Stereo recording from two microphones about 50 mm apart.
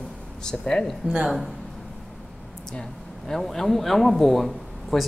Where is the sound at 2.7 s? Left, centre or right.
Centre.